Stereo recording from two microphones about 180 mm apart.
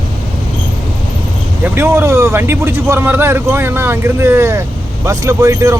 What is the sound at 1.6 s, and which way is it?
Speech, 15° right (ahead or behind).